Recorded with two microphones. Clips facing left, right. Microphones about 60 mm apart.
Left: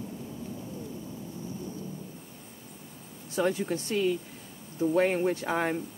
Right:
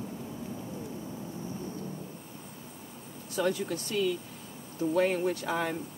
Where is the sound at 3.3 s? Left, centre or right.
Left.